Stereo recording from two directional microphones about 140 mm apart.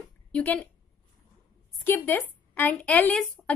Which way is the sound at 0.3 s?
10° left (ahead or behind).